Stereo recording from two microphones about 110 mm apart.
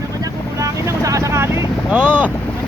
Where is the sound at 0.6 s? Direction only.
30° right (ahead or behind).